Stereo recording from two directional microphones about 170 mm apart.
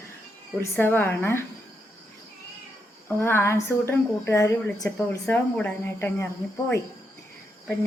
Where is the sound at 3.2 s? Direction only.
15° left (ahead or behind).